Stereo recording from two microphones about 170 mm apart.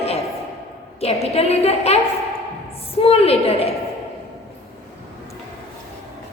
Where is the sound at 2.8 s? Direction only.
35° left (ahead or behind).